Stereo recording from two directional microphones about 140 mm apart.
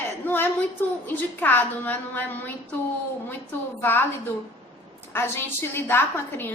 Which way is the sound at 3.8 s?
15° left (ahead or behind).